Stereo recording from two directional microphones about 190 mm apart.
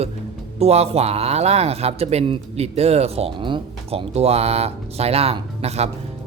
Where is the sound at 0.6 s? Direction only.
35° right (ahead or behind).